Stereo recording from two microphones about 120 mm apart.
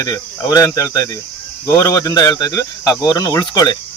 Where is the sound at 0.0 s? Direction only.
30° left (ahead or behind).